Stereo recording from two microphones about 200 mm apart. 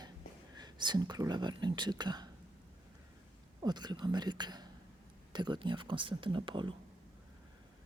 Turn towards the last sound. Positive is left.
turn(degrees=-25)  # may be behind; listen again after turning